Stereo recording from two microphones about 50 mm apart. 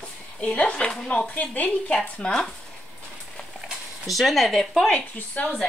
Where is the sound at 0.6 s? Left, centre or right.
Left.